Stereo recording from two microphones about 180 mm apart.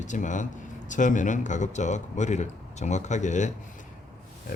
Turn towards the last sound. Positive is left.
turn(degrees=40)  # may be behind; listen again after turning